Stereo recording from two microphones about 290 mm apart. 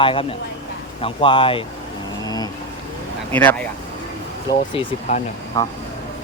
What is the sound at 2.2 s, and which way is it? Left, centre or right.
Vehicle, centre.